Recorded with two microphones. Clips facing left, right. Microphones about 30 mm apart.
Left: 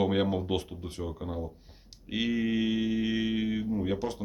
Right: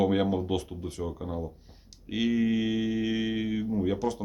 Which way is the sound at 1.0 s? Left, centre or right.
Left.